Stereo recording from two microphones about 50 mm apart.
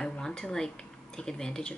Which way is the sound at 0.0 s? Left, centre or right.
Centre.